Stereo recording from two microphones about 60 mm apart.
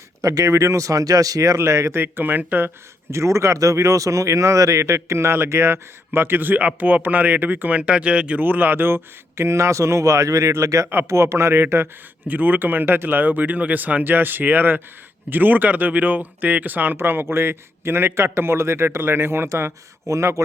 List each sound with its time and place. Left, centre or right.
0.2 s speech: right
1.5 s speech: right
2.0 s speech: right
3.1 s speech: right; by 8.4 s centre
8.4 s speech: right
9.4 s speech: right
11.1 s speech: right
12.3 s speech: right